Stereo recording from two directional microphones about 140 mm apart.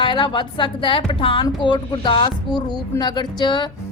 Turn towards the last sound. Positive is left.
turn(degrees=35)  # may be behind; listen again after turning